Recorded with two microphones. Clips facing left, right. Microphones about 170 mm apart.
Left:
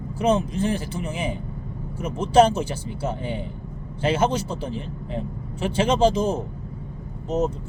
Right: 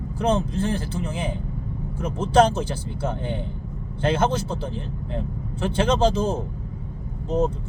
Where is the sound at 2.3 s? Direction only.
10° left (ahead or behind).